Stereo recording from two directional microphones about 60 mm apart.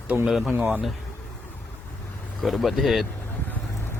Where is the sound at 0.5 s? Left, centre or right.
Right.